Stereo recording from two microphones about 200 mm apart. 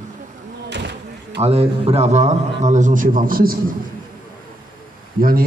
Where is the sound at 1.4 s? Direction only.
30° right (ahead or behind); by 3.5 s 45° right (ahead or behind).